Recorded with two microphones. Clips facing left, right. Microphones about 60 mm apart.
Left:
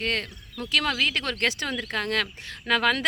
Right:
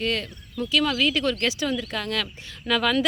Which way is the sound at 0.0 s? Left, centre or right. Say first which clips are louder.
Right 2 dB; left.